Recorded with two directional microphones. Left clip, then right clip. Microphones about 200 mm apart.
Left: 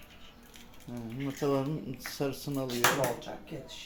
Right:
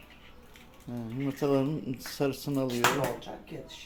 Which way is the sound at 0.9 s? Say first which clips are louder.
Right 3 dB; 20° right (ahead or behind).